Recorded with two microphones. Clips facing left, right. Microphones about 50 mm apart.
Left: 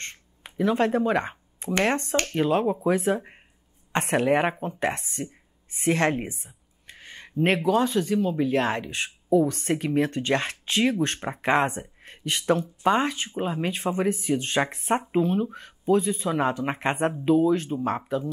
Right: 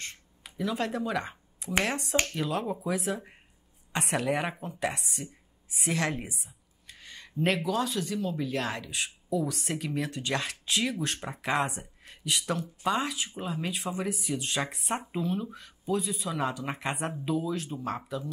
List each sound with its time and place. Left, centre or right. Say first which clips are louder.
0.0 s a sound: left 3 dB; left
2.0 s speech: left 3 dB; centre
2.3 s speech: left 8 dB; left